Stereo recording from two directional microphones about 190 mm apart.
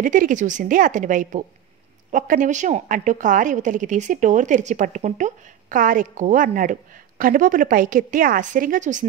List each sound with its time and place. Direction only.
0.0 s a woman's voice: 45° right (ahead or behind)